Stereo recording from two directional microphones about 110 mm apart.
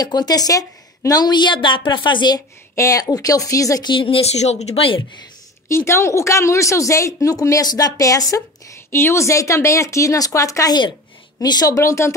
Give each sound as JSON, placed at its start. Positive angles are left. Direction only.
{"t": 0.0, "sound": "a woman's voice", "side_deg": 40}
{"t": 2.7, "sound": "a woman's voice", "side_deg": 30}
{"t": 3.9, "sound": "speech", "side_deg": 55}
{"t": 4.4, "sound": "speech", "side_deg": 85}
{"t": 5.7, "sound": "speech", "side_deg": 25}